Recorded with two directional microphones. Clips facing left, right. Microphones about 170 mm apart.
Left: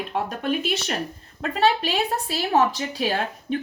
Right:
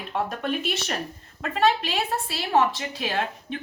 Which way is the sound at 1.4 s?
35° left (ahead or behind).